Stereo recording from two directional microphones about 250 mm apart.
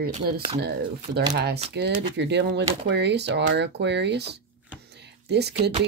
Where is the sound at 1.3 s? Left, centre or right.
Right.